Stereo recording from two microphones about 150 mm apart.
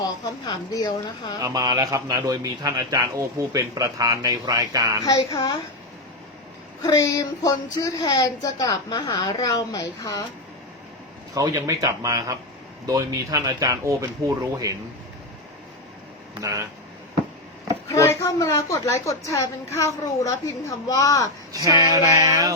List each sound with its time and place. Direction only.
0.0 s speech: 25° left (ahead or behind)
1.4 s a man's voice: 25° right (ahead or behind)
5.0 s speech: 25° left (ahead or behind)
6.8 s speech: 20° left (ahead or behind)
11.3 s a man's voice: 20° right (ahead or behind)
17.8 s speech: 20° left (ahead or behind)
21.5 s a sound: 25° right (ahead or behind)
22.1 s a man's voice: 25° right (ahead or behind)